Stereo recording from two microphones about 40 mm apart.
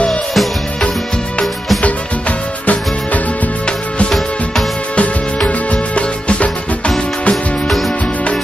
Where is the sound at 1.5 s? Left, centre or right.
Centre.